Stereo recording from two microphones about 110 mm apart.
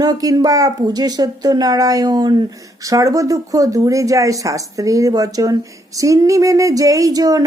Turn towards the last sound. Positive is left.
turn(degrees=-35)  # may be behind; listen again after turning